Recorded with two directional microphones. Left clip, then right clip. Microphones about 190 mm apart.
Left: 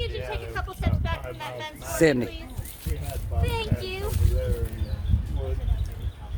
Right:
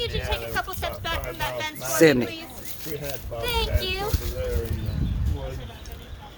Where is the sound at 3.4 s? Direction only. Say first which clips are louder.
Right 5 dB; 40° right (ahead or behind).